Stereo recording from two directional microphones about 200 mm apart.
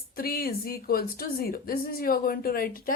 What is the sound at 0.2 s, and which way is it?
A woman's voice, 50° left (ahead or behind).